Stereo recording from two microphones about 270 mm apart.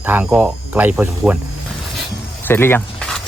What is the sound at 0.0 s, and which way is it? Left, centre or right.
Speech, centre.